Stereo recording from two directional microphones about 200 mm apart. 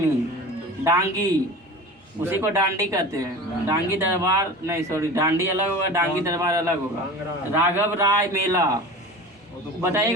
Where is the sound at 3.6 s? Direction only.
15° right (ahead or behind).